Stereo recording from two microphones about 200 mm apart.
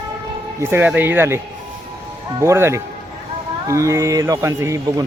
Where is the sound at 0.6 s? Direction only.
10° right (ahead or behind).